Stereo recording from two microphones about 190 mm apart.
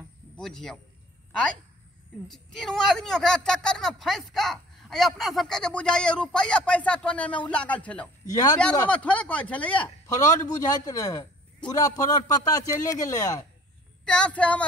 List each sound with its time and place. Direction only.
0.4 s speech: 5° left (ahead or behind)
2.2 s speech: centre (ahead or behind)
8.3 s speech: 20° left (ahead or behind)
8.7 s speech: 5° left (ahead or behind)
10.0 s speech: 20° left (ahead or behind)
14.0 s speech: 5° left (ahead or behind)